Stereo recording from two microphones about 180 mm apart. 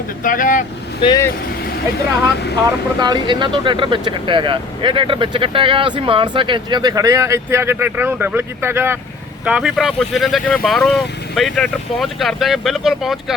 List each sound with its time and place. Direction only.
0.2 s speech: 50° left (ahead or behind)
1.0 s speech: 20° left (ahead or behind)
3.0 s speech: 25° right (ahead or behind); by 13.3 s centre (ahead or behind)